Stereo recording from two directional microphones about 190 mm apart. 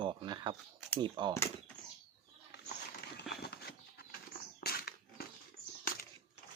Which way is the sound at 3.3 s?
55° left (ahead or behind).